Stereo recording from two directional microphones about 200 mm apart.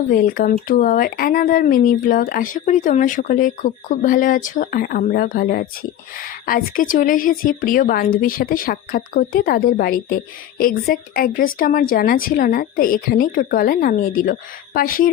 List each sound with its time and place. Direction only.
0.1 s speech: 45° left (ahead or behind)